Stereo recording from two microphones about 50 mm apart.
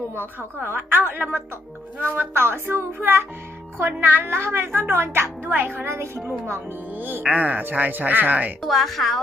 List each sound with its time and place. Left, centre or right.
0.2 s speech: right
5.5 s speech: right
6.9 s speech: right
7.2 s speech: right
8.6 s speech: centre